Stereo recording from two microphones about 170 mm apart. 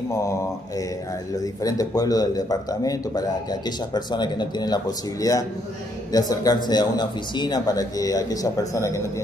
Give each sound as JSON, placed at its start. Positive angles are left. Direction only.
{"t": 0.1, "sound": "mantra", "side_deg": 15}
{"t": 1.4, "sound": "a man's voice", "side_deg": 20}